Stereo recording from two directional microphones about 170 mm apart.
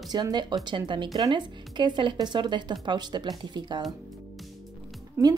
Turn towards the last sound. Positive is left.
turn(degrees=-15)  # may be behind; listen again after turning